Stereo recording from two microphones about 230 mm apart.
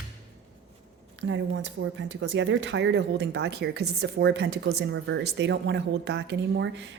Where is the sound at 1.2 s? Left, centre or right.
Right.